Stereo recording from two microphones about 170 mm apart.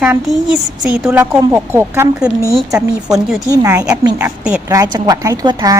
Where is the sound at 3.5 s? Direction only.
20° right (ahead or behind).